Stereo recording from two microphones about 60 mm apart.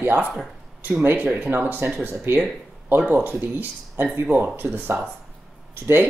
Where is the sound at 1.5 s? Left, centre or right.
Right.